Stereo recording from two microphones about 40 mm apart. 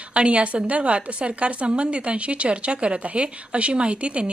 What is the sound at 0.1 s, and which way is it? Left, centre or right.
A woman's voice, right.